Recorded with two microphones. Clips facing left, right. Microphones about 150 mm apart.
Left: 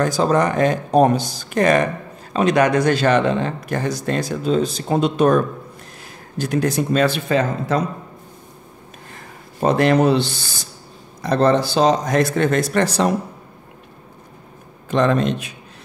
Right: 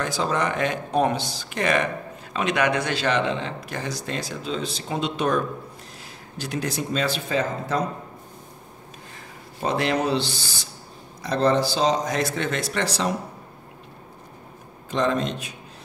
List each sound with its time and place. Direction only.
0.0 s speech: 45° left (ahead or behind); by 7.8 s 65° left (ahead or behind)
9.6 s speech: 50° left (ahead or behind)
14.9 s speech: 65° left (ahead or behind)